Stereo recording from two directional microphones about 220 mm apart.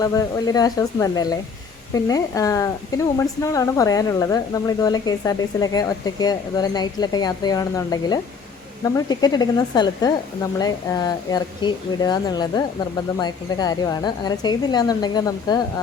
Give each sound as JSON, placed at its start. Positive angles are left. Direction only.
{"t": 0.0, "sound": "speech", "side_deg": 15}